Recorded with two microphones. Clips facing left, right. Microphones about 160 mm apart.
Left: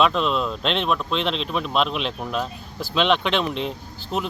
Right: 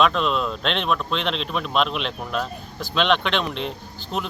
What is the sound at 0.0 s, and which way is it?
Speech, centre (ahead or behind).